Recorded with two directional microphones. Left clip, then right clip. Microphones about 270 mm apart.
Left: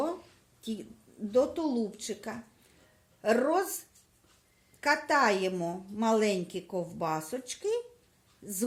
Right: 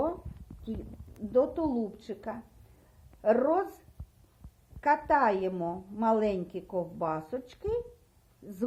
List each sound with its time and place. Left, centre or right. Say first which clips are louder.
1.3 s a woman's voice: even; left
4.8 s a woman's voice: right 1 dB; left